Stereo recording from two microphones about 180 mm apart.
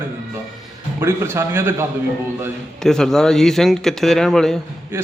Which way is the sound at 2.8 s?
5° left (ahead or behind).